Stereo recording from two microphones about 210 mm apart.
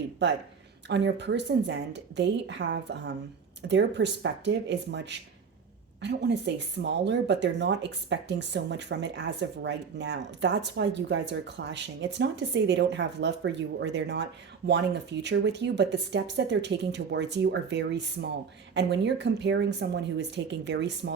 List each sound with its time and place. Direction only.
0.2 s speech: 55° right (ahead or behind)